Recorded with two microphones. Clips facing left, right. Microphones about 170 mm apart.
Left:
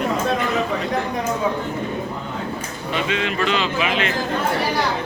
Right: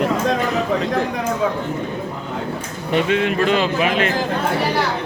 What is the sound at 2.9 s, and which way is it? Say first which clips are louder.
Speech: right 6 dB; 55° right (ahead or behind).